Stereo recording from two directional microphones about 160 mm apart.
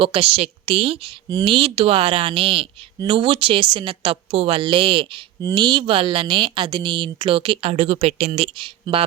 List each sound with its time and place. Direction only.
0.0 s a woman's voice: 35° right (ahead or behind)